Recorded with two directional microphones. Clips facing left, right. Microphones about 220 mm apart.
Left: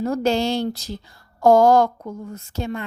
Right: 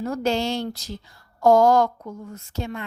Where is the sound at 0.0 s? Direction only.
35° left (ahead or behind).